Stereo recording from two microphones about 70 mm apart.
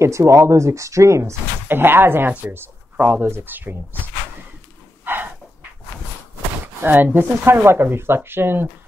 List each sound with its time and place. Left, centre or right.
0.0 s speech: right
1.7 s speech: right
5.0 s dog: right
6.8 s speech: right